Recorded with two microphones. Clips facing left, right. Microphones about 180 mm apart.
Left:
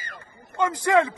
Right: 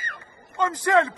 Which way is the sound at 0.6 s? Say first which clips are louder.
Even; 10° left (ahead or behind).